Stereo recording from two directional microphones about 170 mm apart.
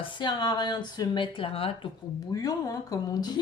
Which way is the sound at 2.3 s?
20° left (ahead or behind).